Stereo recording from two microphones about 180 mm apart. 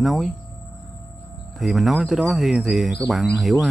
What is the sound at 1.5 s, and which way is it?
Speech, centre (ahead or behind).